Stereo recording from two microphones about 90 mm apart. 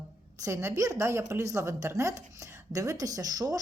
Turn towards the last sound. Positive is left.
turn(degrees=-45)  # may be behind; listen again after turning